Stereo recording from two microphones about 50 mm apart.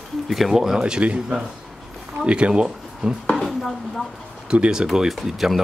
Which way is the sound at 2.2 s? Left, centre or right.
Right.